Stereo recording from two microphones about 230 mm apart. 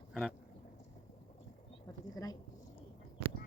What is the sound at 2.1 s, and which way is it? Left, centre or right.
Speech, centre.